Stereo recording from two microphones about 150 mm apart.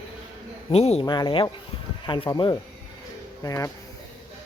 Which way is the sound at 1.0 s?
30° left (ahead or behind).